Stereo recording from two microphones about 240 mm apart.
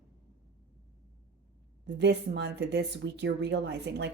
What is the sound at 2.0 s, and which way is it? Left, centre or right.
Speech, right.